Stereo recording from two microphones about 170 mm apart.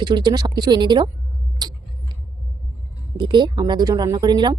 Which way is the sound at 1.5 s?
25° right (ahead or behind).